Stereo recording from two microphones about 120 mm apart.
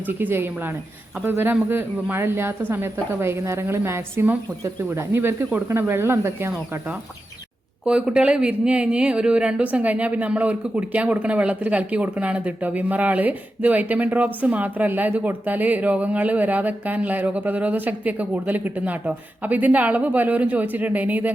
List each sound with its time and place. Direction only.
0.0 s a woman's voice: 15° right (ahead or behind)
7.9 s a woman's voice: 10° right (ahead or behind)